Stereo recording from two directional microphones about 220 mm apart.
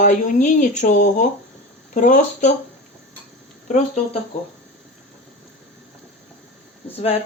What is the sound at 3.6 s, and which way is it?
Speech, 30° left (ahead or behind).